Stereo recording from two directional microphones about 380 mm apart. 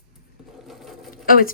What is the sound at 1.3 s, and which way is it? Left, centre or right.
Speech, left.